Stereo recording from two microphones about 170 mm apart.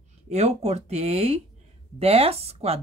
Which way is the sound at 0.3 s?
40° right (ahead or behind).